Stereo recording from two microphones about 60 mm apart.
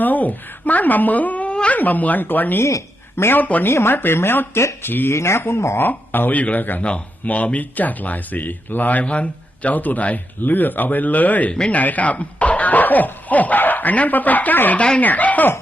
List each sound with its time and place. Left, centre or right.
0.0 s speech: left
2.6 s speech: left
3.2 s speech: left
3.7 s speech: left
5.1 s speech: left
14.8 s speech: left